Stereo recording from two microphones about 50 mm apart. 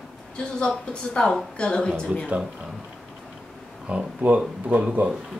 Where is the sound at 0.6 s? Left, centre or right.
Left.